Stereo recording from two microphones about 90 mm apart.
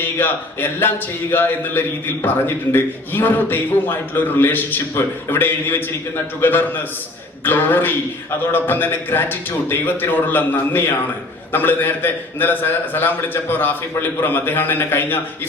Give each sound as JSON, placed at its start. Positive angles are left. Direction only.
{"t": 0.2, "sound": "speech", "side_deg": 25}